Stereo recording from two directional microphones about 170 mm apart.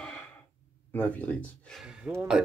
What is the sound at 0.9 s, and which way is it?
Speech, 10° left (ahead or behind).